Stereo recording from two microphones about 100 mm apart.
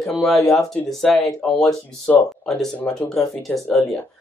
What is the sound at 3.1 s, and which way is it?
Speech, 5° left (ahead or behind).